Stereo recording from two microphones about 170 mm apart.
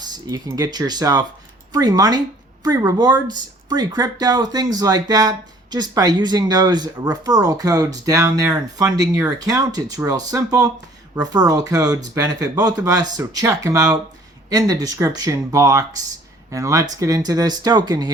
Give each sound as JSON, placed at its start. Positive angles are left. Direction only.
{"t": 0.0, "sound": "speech", "side_deg": -25}